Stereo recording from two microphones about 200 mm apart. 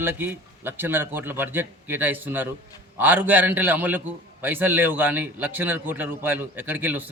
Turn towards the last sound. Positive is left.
turn(degrees=-10)  # may be behind; listen again after turning